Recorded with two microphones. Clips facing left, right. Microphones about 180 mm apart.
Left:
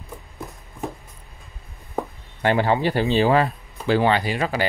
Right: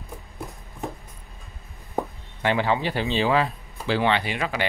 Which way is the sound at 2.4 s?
45° left (ahead or behind).